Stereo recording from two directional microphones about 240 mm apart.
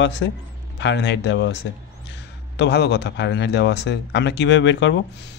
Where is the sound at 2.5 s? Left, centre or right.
Left.